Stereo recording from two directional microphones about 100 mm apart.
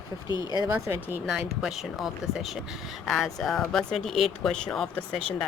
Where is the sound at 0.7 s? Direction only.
20° right (ahead or behind).